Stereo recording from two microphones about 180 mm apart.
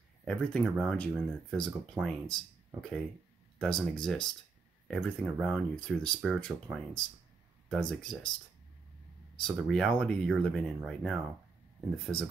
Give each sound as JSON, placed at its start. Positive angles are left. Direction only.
{"t": 0.2, "sound": "speech", "side_deg": 5}
{"t": 9.4, "sound": "speech", "side_deg": 5}